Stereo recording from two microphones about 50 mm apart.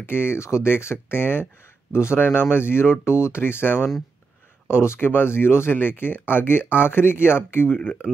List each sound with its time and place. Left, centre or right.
0.0 s speech: left
0.4 s speech: left
4.6 s speech: left